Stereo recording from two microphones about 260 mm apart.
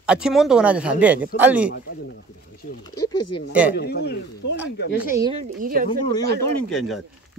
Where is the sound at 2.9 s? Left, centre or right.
Left.